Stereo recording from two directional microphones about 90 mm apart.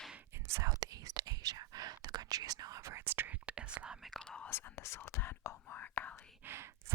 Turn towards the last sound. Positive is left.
turn(degrees=-30)  # may be behind; listen again after turning